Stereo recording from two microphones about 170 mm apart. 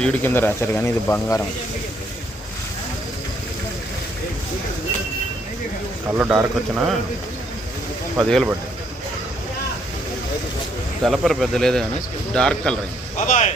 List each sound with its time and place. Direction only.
0.0 s speech: 10° left (ahead or behind)
6.1 s a man's voice: 10° right (ahead or behind)
8.2 s speech: centre (ahead or behind)
11.0 s speech: centre (ahead or behind)
13.1 s speech: 45° left (ahead or behind)